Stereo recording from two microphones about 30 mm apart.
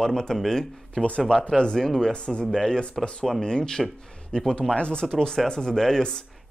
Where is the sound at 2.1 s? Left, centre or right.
Left.